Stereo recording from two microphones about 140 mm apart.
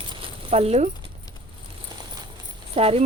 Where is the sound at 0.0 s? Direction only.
40° right (ahead or behind).